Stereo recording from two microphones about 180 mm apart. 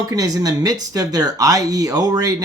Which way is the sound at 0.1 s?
20° right (ahead or behind).